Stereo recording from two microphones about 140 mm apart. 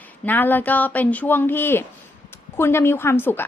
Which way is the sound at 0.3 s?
15° left (ahead or behind).